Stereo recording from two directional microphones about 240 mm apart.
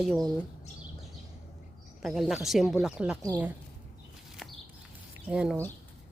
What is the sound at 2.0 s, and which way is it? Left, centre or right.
Speech, centre.